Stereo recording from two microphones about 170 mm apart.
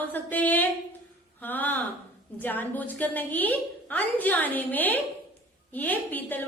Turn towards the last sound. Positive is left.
turn(degrees=10)  # may be behind; listen again after turning